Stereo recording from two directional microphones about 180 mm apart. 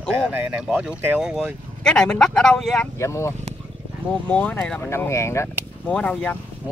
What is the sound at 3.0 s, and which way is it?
Speech, 15° left (ahead or behind).